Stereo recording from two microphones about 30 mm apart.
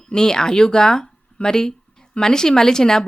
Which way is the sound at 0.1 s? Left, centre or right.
Left.